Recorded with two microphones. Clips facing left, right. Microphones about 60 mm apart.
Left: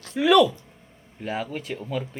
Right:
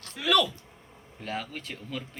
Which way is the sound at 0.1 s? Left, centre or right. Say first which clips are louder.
Left 8 dB; left.